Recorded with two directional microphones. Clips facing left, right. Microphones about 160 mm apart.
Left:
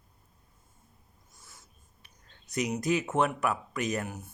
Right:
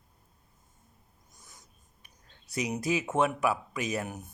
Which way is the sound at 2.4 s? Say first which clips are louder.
Left 2 dB; 5° right (ahead or behind).